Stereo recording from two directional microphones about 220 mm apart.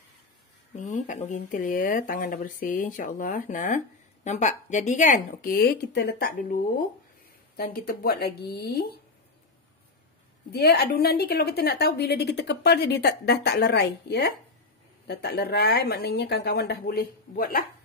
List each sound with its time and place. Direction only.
0.7 s a woman's voice: 35° left (ahead or behind)
10.5 s a woman's voice: 45° left (ahead or behind)